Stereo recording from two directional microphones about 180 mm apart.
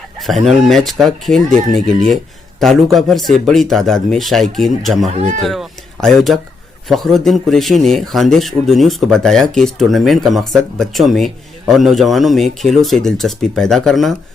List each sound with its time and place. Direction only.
0.6 s speech: centre (ahead or behind)
2.6 s speech: centre (ahead or behind)
5.0 s speech: 40° right (ahead or behind)
5.4 s speech: centre (ahead or behind)